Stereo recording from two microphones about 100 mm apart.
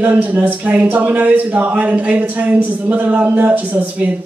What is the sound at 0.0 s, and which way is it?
A woman's voice, 15° right (ahead or behind).